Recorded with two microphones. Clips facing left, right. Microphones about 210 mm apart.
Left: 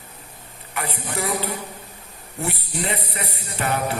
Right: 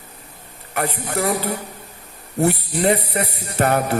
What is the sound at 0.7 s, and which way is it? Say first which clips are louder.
Music: right 6 dB; 45° right (ahead or behind).